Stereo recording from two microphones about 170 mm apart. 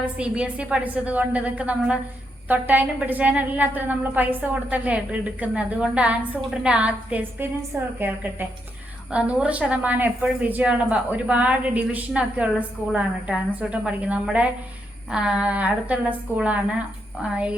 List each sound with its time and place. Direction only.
0.0 s speech: 5° right (ahead or behind)